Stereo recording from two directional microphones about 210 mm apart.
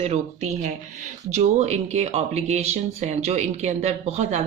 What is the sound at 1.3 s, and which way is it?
Speech, 35° right (ahead or behind).